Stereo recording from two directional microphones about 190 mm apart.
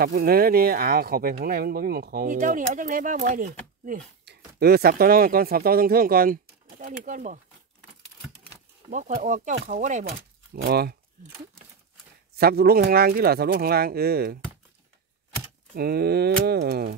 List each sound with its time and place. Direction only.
0.0 s speech: 50° right (ahead or behind)
8.9 s speech: 40° right (ahead or behind)
10.5 s speech: 55° right (ahead or behind)
12.4 s speech: 55° right (ahead or behind)
15.7 s speech: 55° right (ahead or behind)